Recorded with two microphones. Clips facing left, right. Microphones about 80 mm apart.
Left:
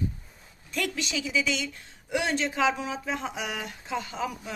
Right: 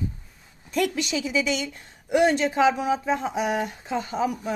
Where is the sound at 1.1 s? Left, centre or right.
Right.